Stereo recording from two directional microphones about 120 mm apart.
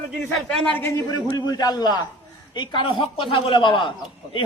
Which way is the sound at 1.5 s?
35° left (ahead or behind).